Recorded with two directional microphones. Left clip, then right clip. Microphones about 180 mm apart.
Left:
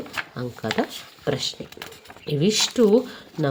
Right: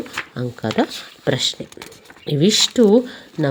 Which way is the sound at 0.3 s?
30° right (ahead or behind).